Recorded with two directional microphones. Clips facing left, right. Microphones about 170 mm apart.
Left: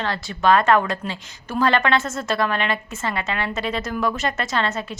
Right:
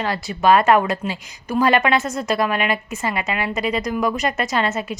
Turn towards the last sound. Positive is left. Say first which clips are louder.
# right 3 dB
turn(degrees=-20)  # may be behind; listen again after turning